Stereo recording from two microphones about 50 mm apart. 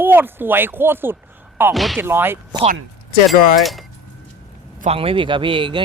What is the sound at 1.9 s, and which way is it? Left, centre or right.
Speech, right.